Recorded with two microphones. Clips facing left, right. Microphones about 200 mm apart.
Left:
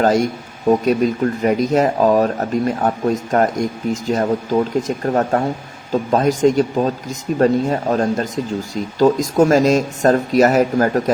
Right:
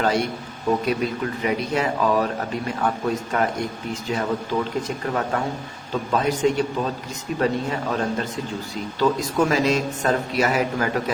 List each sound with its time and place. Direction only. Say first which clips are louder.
0.0 s speech: left 6 dB; 45° left (ahead or behind)
7.9 s speech: left 6 dB; 35° left (ahead or behind)